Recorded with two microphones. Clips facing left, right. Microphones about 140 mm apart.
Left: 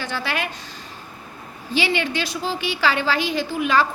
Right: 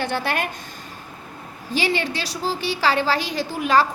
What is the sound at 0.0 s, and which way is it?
Speech, 55° right (ahead or behind).